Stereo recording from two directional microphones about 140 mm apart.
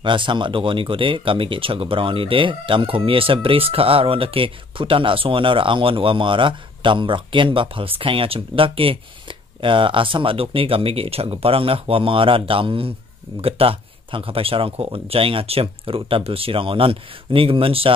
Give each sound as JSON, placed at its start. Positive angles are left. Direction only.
{"t": 0.0, "sound": "speech", "side_deg": -35}